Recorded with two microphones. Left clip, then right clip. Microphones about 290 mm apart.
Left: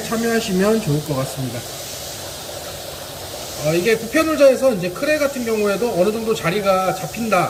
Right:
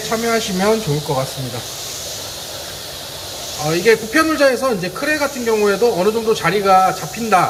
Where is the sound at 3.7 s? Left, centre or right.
Centre.